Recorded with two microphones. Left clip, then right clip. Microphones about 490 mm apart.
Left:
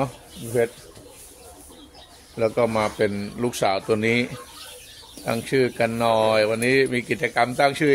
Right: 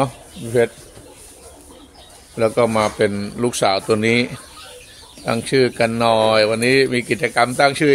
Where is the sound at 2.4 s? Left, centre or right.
Left.